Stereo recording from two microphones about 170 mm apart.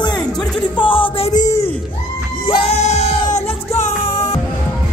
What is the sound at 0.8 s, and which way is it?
Music, 30° left (ahead or behind).